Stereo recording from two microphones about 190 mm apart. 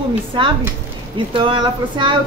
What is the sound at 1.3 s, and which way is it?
Speech, 25° right (ahead or behind).